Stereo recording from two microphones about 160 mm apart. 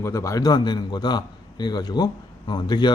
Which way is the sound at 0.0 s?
15° left (ahead or behind).